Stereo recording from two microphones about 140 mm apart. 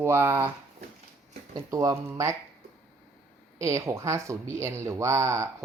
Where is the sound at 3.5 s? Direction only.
20° right (ahead or behind).